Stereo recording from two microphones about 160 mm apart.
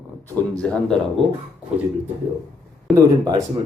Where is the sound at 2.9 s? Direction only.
25° right (ahead or behind).